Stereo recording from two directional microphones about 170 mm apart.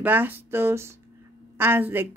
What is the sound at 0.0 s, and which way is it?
Speech, 10° right (ahead or behind).